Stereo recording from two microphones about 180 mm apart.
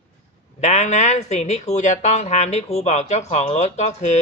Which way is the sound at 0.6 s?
40° left (ahead or behind).